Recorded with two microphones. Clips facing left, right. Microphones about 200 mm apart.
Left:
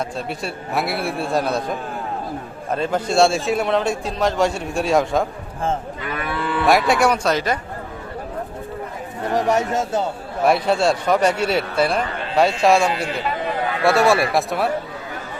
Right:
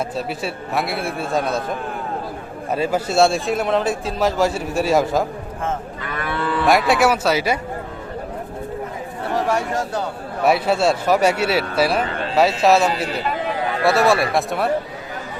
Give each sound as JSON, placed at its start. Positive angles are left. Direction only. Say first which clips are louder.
{"t": 0.2, "sound": "a man's voice", "louder": "right 2 dB", "side_deg": 0}
{"t": 2.7, "sound": "a man's voice", "louder": "even", "side_deg": -5}
{"t": 6.7, "sound": "a man's voice", "louder": "even", "side_deg": 0}
{"t": 9.3, "sound": "speech", "louder": "left 2 dB", "side_deg": 20}
{"t": 10.4, "sound": "a man's voice", "louder": "even", "side_deg": -5}